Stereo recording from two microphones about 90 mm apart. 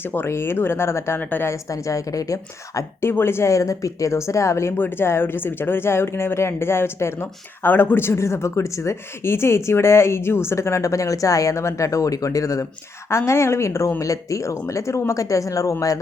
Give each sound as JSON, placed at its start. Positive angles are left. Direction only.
{"t": 0.0, "sound": "speech", "side_deg": 25}
{"t": 1.6, "sound": "a woman's voice", "side_deg": 35}